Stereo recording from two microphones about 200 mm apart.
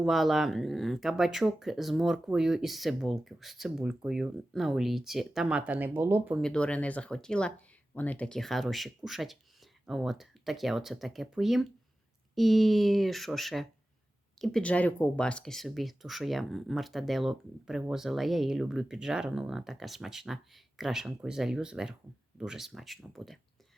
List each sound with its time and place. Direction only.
0.0 s speech: centre (ahead or behind)
6.4 s speech: 5° left (ahead or behind)